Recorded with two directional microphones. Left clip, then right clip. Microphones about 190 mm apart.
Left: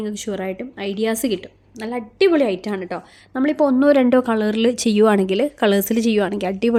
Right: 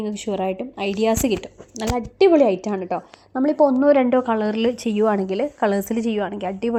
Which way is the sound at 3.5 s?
40° left (ahead or behind).